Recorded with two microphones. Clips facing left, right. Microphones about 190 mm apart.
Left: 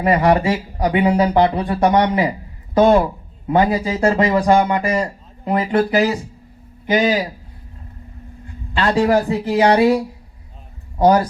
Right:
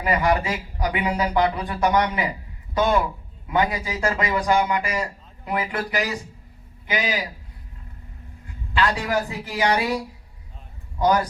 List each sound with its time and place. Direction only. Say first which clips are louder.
0.0 s speech: left 7 dB; 30° left (ahead or behind)
8.7 s speech: left 7 dB; 30° left (ahead or behind)
11.0 s speech: left 6 dB; 30° left (ahead or behind)